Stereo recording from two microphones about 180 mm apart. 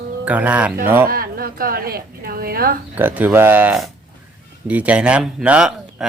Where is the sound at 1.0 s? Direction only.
55° right (ahead or behind).